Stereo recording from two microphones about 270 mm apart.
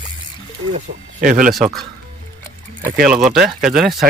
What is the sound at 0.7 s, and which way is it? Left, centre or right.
Speech, right.